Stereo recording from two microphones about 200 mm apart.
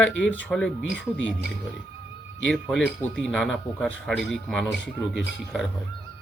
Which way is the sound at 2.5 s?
5° left (ahead or behind).